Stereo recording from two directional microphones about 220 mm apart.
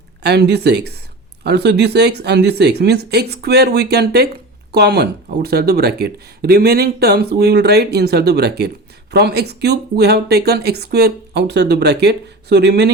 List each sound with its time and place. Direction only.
0.2 s speech: 50° right (ahead or behind)